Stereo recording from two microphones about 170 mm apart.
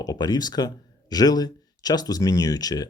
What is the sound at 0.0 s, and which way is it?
Speech, 25° left (ahead or behind).